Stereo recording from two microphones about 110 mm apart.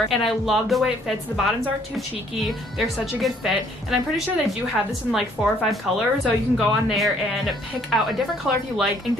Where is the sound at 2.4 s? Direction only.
Centre (ahead or behind).